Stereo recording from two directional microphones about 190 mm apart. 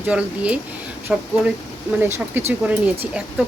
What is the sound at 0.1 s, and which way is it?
Speech, 5° right (ahead or behind).